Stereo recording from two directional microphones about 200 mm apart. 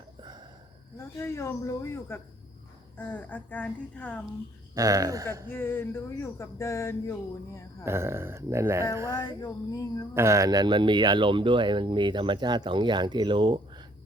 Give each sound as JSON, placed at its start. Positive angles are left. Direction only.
{"t": 0.2, "sound": "a sound", "side_deg": -20}
{"t": 0.9, "sound": "speech", "side_deg": 15}
{"t": 4.7, "sound": "speech", "side_deg": -15}
{"t": 5.5, "sound": "speech", "side_deg": 10}
{"t": 7.9, "sound": "speech", "side_deg": -10}
{"t": 9.0, "sound": "speech", "side_deg": 20}
{"t": 10.2, "sound": "speech", "side_deg": -15}